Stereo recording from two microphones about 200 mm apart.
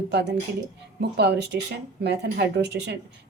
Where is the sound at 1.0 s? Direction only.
55° right (ahead or behind).